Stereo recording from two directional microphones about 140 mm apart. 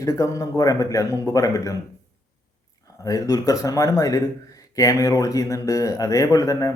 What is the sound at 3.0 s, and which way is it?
Speech, 25° left (ahead or behind).